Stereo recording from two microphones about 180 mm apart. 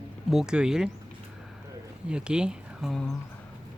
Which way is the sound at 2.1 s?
5° right (ahead or behind).